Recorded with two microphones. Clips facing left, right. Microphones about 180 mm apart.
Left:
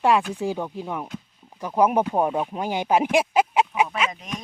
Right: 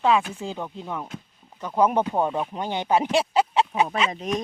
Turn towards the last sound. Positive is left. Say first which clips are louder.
# right 7 dB
turn(degrees=-40)  # may be behind; listen again after turning